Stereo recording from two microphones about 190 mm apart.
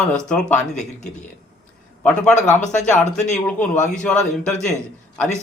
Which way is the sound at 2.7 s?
40° left (ahead or behind).